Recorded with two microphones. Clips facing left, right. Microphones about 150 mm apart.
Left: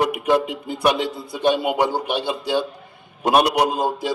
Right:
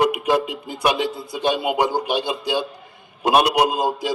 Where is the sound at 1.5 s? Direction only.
5° right (ahead or behind).